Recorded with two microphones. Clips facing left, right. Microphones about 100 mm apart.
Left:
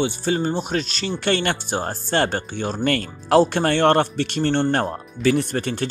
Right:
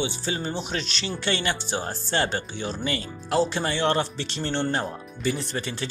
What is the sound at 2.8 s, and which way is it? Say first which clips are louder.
Speech: left 8 dB; 60° left (ahead or behind).